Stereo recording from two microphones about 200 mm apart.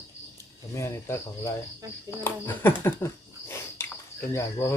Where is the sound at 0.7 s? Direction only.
15° left (ahead or behind).